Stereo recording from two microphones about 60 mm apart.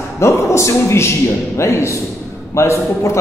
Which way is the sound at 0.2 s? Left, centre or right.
Left.